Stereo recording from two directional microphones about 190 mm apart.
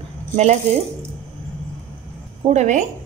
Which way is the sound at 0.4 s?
35° right (ahead or behind).